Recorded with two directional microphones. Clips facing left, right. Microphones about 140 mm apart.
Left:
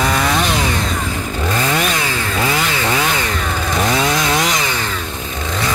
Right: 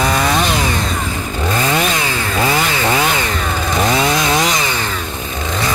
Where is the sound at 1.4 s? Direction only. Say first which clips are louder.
Right 2 dB; 20° right (ahead or behind).